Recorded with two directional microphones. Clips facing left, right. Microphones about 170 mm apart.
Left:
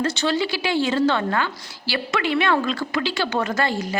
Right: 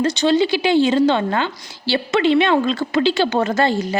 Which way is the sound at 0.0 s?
20° right (ahead or behind).